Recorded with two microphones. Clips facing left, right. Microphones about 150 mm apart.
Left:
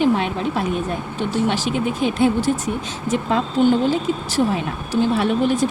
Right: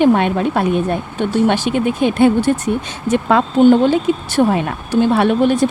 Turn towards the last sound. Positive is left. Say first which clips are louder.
# right 5 dB
turn(degrees=-70)  # may be behind; listen again after turning